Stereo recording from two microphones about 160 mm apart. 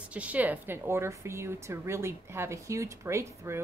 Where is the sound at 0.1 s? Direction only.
10° right (ahead or behind).